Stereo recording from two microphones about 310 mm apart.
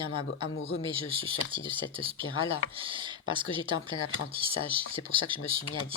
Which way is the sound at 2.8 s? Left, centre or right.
Centre.